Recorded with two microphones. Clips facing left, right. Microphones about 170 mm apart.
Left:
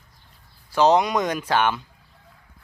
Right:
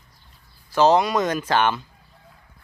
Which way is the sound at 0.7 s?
15° left (ahead or behind).